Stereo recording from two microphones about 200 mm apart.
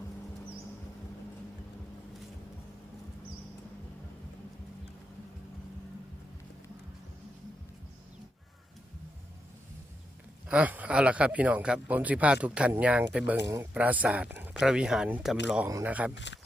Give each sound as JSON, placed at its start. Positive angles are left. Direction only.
{"t": 10.5, "sound": "speech", "side_deg": -5}
{"t": 16.1, "sound": "speech", "side_deg": 60}